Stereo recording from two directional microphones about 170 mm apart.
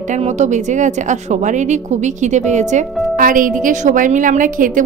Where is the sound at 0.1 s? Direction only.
45° right (ahead or behind).